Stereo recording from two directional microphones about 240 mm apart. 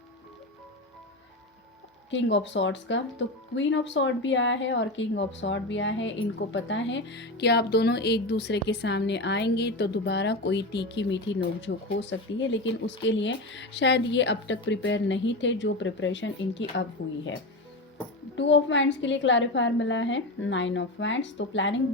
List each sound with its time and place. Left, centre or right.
2.0 s speech: left
18.3 s speech: left